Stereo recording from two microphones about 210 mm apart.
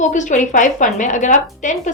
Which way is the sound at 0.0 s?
35° left (ahead or behind).